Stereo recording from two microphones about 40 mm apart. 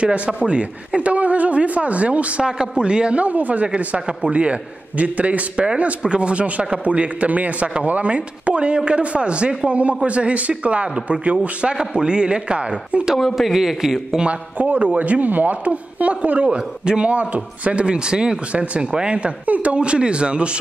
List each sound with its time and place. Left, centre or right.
0.4 s speech: right
2.4 s a man's voice: right
11.7 s speech: right
13.2 s a man's voice: centre
14.6 s a man's voice: right
16.4 s speech: right
17.1 s speech: right
18.5 s a man's voice: right